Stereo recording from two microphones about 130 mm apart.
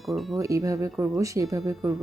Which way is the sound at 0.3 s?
25° right (ahead or behind).